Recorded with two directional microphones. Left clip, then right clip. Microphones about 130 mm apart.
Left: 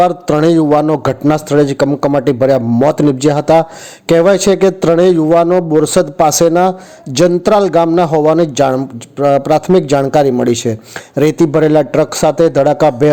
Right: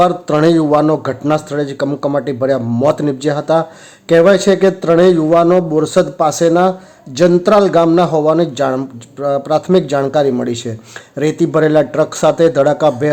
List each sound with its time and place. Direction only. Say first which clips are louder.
0.0 s a man's voice: left 1 dB; 35° left (ahead or behind)